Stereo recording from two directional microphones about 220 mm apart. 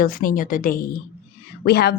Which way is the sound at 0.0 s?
40° left (ahead or behind).